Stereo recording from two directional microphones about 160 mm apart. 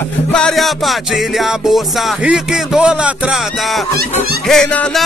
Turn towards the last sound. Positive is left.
turn(degrees=5)  # may be behind; listen again after turning